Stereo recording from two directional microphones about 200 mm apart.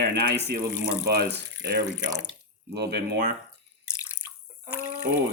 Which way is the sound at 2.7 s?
55° right (ahead or behind).